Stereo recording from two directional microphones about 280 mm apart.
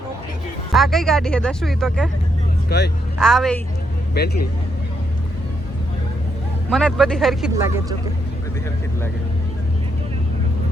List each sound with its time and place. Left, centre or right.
0.7 s speech: centre
2.6 s speech: left
3.2 s speech: centre
4.1 s speech: left
6.7 s speech: centre